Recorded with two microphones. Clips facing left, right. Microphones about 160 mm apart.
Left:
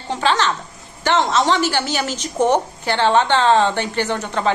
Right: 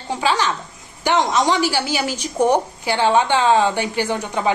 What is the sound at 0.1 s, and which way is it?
Speech, 10° right (ahead or behind).